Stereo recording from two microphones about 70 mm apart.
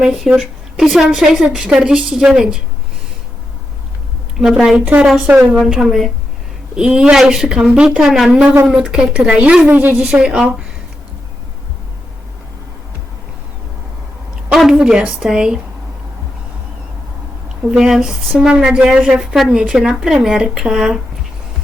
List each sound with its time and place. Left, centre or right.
0.0 s a woman's voice: centre
4.4 s a woman's voice: centre
5.2 s a woman's voice: right
5.5 s a woman's voice: centre
14.5 s a woman's voice: centre
17.6 s a woman's voice: centre